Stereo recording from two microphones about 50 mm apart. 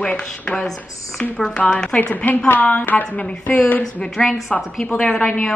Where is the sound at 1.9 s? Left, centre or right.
Left.